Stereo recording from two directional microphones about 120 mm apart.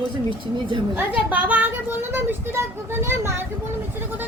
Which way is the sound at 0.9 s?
15° right (ahead or behind).